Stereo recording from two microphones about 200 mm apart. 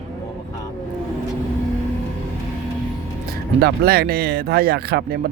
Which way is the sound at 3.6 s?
50° right (ahead or behind).